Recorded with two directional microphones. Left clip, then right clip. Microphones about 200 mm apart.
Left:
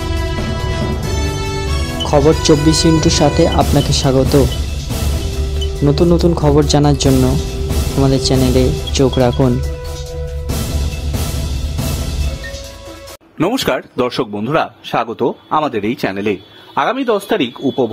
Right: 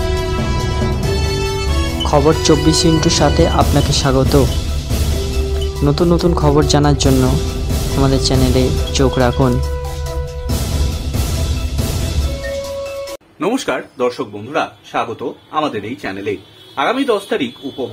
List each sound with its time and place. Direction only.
2.0 s speech: centre (ahead or behind)
5.9 s speech: centre (ahead or behind)
13.4 s speech: 50° left (ahead or behind)